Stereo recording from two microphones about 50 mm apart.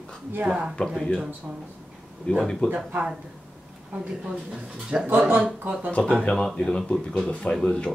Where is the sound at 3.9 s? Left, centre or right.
Right.